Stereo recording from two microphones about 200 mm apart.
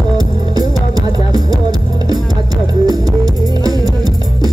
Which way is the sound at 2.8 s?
20° right (ahead or behind).